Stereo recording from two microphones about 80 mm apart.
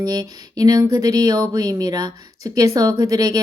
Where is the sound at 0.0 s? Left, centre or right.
Right.